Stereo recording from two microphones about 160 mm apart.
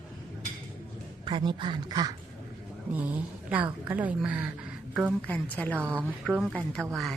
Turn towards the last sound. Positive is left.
turn(degrees=0)  # may be behind; listen again after turning